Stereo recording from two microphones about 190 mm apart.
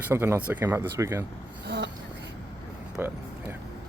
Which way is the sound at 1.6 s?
60° right (ahead or behind).